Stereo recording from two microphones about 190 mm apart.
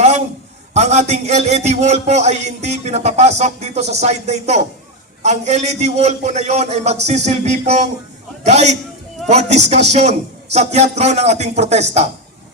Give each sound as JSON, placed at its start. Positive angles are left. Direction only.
{"t": 0.7, "sound": "a man's voice", "side_deg": -35}